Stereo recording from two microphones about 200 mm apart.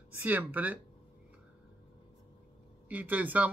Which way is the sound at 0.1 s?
10° right (ahead or behind).